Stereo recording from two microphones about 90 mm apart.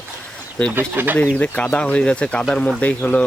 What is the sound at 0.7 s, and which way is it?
Speech, 20° right (ahead or behind).